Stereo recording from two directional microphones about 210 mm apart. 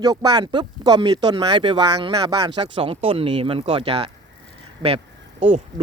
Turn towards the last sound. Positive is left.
turn(degrees=-35)  # may be behind; listen again after turning